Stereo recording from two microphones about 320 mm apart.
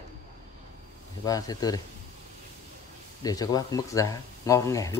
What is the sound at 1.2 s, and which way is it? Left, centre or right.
Speech, centre.